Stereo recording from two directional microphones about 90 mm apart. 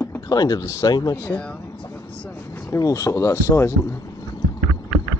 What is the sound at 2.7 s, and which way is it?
Speech, 40° left (ahead or behind).